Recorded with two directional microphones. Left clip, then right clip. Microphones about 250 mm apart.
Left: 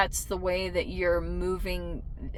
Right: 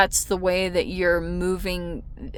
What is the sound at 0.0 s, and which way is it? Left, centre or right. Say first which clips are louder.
Speech: right 7 dB; right.